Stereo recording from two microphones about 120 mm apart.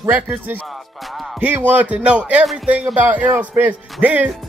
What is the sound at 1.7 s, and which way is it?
A man's voice, 15° right (ahead or behind).